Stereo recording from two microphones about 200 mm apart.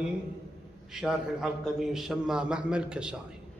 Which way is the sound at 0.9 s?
Centre (ahead or behind).